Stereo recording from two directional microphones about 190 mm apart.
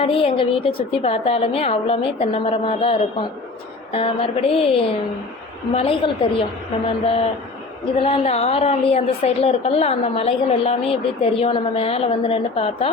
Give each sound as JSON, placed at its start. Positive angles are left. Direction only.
{"t": 0.0, "sound": "a woman's voice", "side_deg": 30}